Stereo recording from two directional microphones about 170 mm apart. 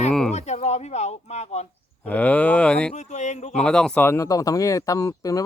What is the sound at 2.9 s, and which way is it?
Speech, 40° left (ahead or behind).